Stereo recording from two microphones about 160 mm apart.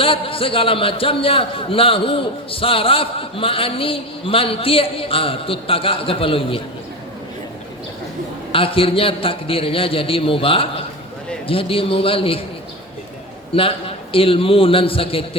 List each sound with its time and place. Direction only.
0.0 s a man's voice: 35° left (ahead or behind)
8.5 s a man's voice: 35° left (ahead or behind)
13.5 s a man's voice: 35° left (ahead or behind)